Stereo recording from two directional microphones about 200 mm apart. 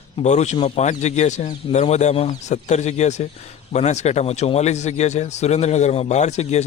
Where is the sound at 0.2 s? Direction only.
35° left (ahead or behind).